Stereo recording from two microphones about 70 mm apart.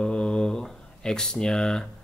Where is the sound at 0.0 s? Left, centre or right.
Centre.